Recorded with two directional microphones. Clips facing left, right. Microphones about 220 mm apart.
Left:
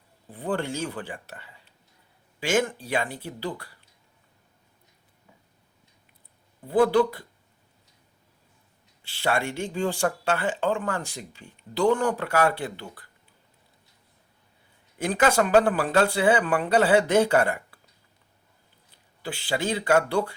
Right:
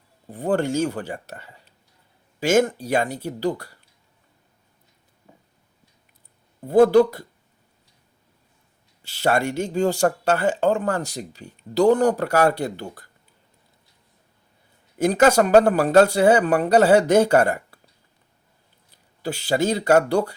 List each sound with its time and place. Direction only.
0.3 s speech: 45° right (ahead or behind)
6.7 s speech: 45° right (ahead or behind)
9.0 s speech: 40° right (ahead or behind)
14.9 s speech: 40° right (ahead or behind)
19.2 s speech: 40° right (ahead or behind)